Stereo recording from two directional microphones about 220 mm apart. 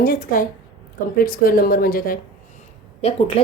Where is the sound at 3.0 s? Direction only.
25° left (ahead or behind).